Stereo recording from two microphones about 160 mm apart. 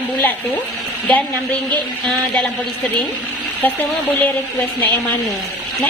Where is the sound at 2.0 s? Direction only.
Centre (ahead or behind).